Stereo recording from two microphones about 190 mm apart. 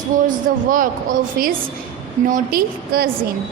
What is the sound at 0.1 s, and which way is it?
A woman's voice, 45° right (ahead or behind).